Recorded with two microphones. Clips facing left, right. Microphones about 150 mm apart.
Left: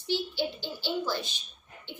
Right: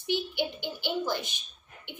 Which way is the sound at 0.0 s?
15° right (ahead or behind).